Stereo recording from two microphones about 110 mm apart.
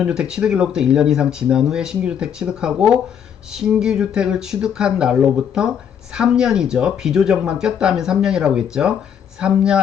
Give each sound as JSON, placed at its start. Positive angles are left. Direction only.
{"t": 0.0, "sound": "speech", "side_deg": -5}